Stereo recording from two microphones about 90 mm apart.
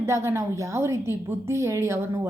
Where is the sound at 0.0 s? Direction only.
30° right (ahead or behind).